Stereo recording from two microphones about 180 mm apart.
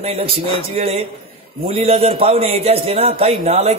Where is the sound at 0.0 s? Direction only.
35° right (ahead or behind).